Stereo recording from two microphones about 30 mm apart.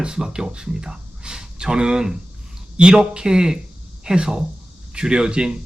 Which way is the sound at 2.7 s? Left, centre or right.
Right.